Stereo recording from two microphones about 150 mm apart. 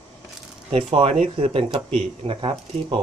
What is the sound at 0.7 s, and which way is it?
Speech, 40° right (ahead or behind).